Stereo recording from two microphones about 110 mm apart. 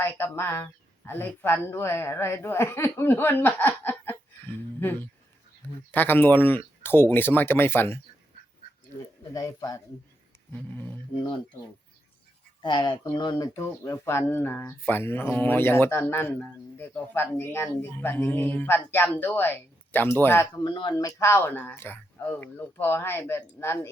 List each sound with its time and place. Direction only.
0.0 s speech: 20° left (ahead or behind)
9.0 s speech: 30° left (ahead or behind)
10.5 s speech: 15° left (ahead or behind)
12.6 s speech: 45° left (ahead or behind)
13.5 s speech: 25° left (ahead or behind)
20.7 s speech: 40° left (ahead or behind)
21.2 s speech: 20° left (ahead or behind)